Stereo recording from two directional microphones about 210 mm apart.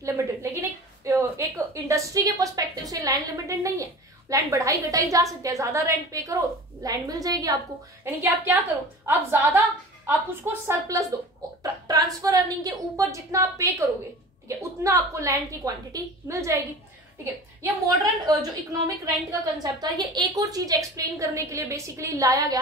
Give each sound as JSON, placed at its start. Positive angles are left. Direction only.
{"t": 0.0, "sound": "a sound", "side_deg": -15}
{"t": 4.3, "sound": "a woman's voice", "side_deg": -15}
{"t": 18.2, "sound": "a woman's voice", "side_deg": -15}